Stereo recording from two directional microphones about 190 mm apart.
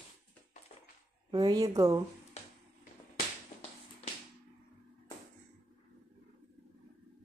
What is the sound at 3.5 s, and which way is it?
Tap, 40° left (ahead or behind).